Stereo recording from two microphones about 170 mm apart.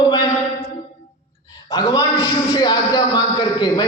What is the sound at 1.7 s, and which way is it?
Mantra, 25° left (ahead or behind).